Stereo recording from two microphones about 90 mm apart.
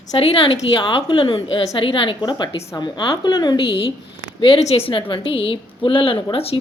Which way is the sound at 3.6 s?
90° left.